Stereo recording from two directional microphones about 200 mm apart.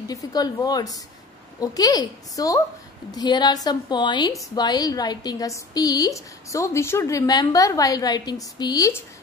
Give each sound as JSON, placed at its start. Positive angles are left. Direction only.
{"t": 0.1, "sound": "a woman's voice", "side_deg": 20}